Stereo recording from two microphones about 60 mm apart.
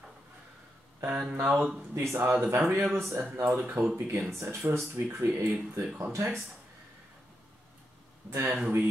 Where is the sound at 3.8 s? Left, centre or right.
Right.